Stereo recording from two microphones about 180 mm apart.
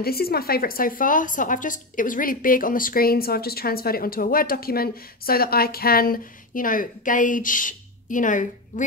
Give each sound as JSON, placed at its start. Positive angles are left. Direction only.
{"t": 0.0, "sound": "a woman's voice", "side_deg": 60}